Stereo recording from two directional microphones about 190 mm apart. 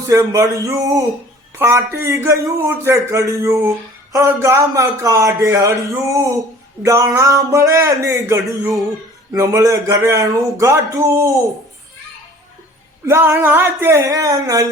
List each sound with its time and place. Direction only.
0.1 s a man's voice: 20° right (ahead or behind)
13.1 s a man's voice: 15° right (ahead or behind)